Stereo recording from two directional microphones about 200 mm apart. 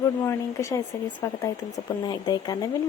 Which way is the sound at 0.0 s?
15° left (ahead or behind).